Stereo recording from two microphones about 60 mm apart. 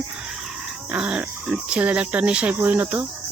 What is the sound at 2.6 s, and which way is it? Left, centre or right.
Speech, right.